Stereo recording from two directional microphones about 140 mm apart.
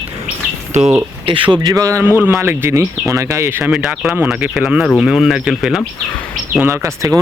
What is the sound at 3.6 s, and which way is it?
Speech, 5° right (ahead or behind).